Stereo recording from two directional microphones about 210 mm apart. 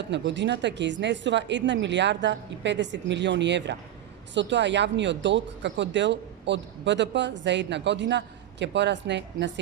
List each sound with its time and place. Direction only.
0.0 s speech: 55° right (ahead or behind)